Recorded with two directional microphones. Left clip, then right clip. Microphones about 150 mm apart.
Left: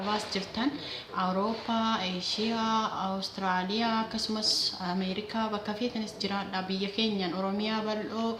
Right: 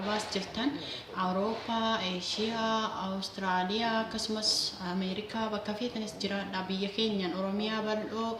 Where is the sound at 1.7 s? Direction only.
45° left (ahead or behind).